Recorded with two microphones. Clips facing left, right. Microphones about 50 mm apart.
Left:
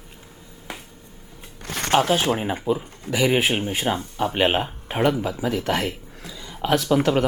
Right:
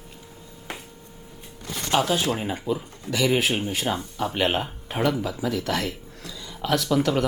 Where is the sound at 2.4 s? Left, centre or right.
Left.